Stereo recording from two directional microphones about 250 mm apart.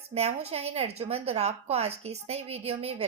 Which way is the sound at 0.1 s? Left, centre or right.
Right.